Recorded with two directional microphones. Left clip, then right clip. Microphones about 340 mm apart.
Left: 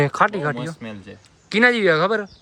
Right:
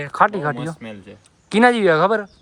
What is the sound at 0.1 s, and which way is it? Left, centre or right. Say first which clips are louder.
Speech: right 2 dB; centre.